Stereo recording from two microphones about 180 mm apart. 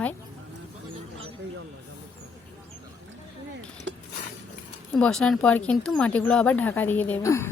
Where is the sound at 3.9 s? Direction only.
90° right.